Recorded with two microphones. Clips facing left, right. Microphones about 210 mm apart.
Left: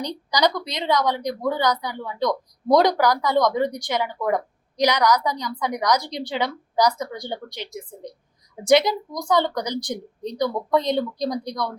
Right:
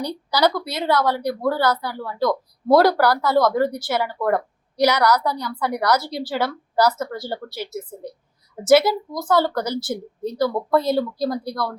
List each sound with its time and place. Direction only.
0.0 s speech: 10° right (ahead or behind)